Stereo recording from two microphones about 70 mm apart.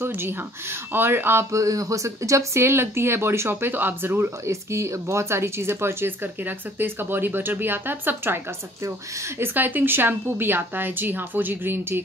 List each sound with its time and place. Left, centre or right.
0.0 s speech: right
4.5 s speech: right
9.4 s speech: right